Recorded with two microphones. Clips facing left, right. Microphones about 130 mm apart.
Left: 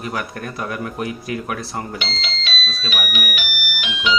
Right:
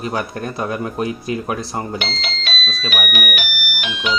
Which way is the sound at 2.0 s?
50° right (ahead or behind).